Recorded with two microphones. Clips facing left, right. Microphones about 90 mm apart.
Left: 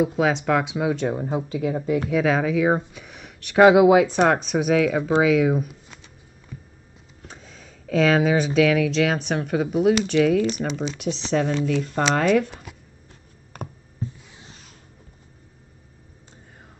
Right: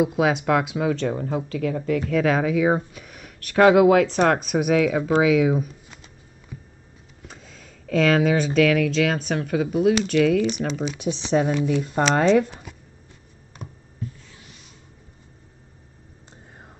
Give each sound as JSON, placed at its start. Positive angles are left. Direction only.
{"t": 0.0, "sound": "speech", "side_deg": -5}
{"t": 2.0, "sound": "speech", "side_deg": 5}
{"t": 3.5, "sound": "speech", "side_deg": 10}
{"t": 4.4, "sound": "speech", "side_deg": -5}
{"t": 7.2, "sound": "speech", "side_deg": 0}
{"t": 11.3, "sound": "speech", "side_deg": -15}
{"t": 14.0, "sound": "a sound", "side_deg": 25}